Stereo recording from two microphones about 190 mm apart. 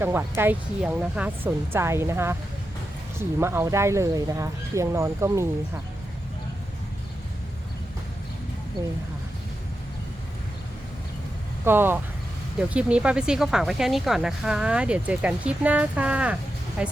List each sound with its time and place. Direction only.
0.0 s speech: 10° right (ahead or behind)
11.6 s speech: 10° right (ahead or behind)